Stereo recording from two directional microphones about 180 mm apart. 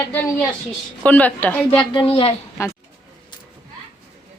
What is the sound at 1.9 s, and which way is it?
Speech, 30° left (ahead or behind).